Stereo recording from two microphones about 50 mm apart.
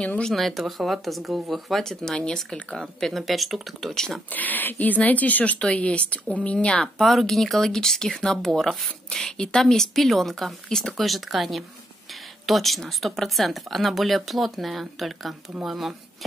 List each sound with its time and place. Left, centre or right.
0.3 s speech: centre
2.8 s speech: centre
3.9 s speech: centre
4.3 s speech: left
6.8 s speech: centre